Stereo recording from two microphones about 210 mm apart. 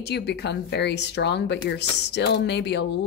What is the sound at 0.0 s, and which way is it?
A woman's voice, 55° left (ahead or behind).